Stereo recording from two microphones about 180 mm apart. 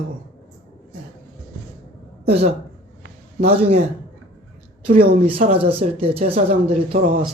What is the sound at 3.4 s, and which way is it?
Speech, 35° right (ahead or behind).